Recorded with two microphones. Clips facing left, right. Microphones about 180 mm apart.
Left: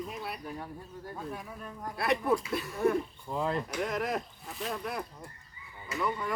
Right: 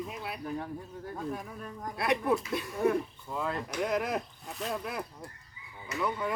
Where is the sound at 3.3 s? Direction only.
30° left (ahead or behind).